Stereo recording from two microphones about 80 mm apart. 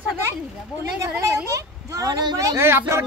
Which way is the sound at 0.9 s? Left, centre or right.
Right.